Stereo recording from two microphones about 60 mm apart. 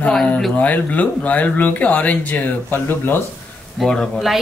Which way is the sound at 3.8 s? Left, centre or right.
Centre.